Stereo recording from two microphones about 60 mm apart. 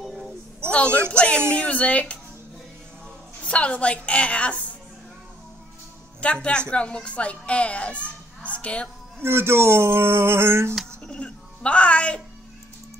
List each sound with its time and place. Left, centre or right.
0.7 s a woman's voice: centre
3.4 s speech: centre
6.2 s speech: centre
9.2 s a sound: right
11.1 s music: centre